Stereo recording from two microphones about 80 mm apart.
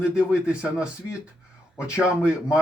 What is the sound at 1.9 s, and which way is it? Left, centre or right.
Speech, centre.